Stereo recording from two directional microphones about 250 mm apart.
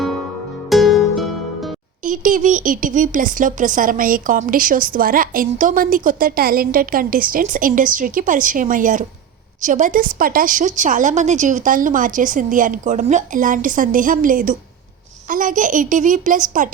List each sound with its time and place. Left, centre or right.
0.7 s music: centre
2.0 s speech: right